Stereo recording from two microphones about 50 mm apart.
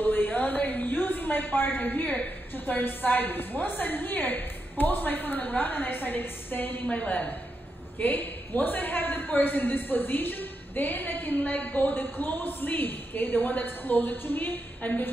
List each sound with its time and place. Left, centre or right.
0.0 s a sound: left
0.9 s a woman's voice: left
6.9 s a woman's voice: left
14.8 s music: left